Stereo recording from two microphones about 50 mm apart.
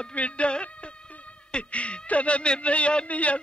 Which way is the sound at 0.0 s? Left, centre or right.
Left.